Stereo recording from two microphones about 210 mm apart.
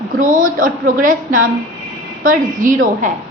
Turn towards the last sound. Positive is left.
turn(degrees=-40)  # may be behind; listen again after turning